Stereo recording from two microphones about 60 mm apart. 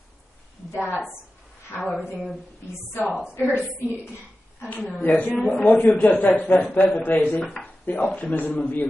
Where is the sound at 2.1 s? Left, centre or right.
Centre.